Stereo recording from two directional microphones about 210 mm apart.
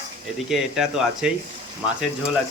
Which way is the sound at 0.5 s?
5° right (ahead or behind).